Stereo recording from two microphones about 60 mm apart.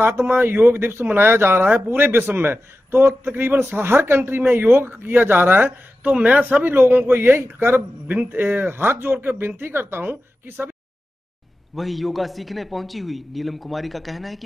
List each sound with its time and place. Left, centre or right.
0.3 s a man's voice: right
11.7 s a man's voice: centre